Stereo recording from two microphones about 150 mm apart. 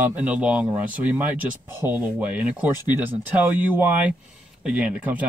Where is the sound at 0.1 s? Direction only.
10° right (ahead or behind).